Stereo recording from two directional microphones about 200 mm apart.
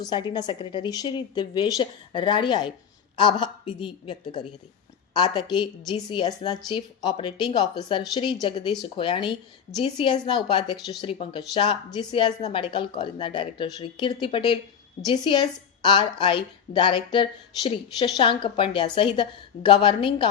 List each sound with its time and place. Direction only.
0.0 s a woman's voice: 25° left (ahead or behind)